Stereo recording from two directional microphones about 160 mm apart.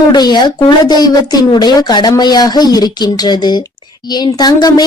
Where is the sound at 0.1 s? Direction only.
25° left (ahead or behind).